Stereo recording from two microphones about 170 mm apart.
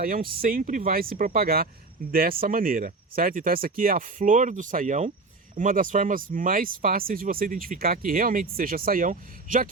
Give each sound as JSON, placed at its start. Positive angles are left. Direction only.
{"t": 0.0, "sound": "speech", "side_deg": -60}